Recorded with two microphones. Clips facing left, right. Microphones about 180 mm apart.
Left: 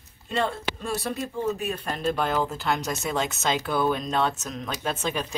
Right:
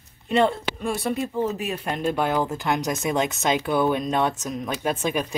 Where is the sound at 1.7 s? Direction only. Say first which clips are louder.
Right 2 dB; 10° right (ahead or behind).